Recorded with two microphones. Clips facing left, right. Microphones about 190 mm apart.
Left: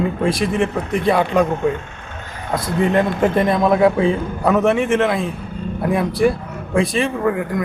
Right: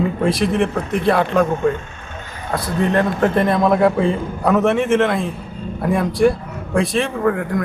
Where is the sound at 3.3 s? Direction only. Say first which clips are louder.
Even; centre (ahead or behind).